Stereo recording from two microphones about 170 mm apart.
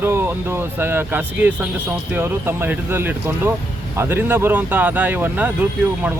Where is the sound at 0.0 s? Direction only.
15° right (ahead or behind).